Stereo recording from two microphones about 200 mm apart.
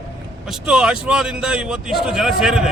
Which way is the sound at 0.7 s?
5° right (ahead or behind).